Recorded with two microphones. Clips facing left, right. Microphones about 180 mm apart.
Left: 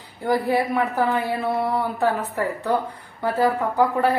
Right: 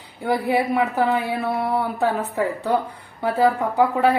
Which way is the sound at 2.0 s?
15° right (ahead or behind).